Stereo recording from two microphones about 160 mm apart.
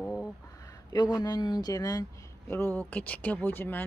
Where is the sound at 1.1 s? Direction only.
25° left (ahead or behind).